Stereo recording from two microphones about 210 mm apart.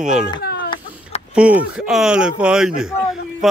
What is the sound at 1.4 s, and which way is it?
Speech, 5° right (ahead or behind).